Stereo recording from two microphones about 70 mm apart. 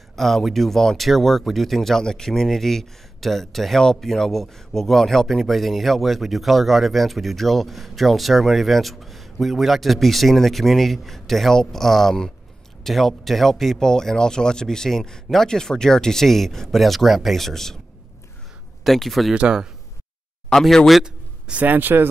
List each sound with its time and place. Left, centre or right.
0.1 s speech: centre
18.9 s speech: centre
19.3 s speech: centre
20.4 s speech: centre
21.0 s a man's voice: centre